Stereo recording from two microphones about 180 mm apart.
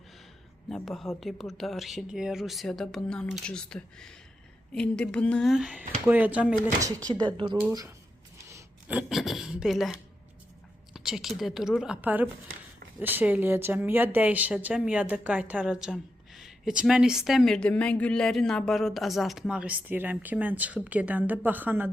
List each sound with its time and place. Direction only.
0.7 s speech: centre (ahead or behind)
7.3 s speech: 25° right (ahead or behind)
8.4 s a sound: 15° right (ahead or behind)
9.0 s speech: centre (ahead or behind)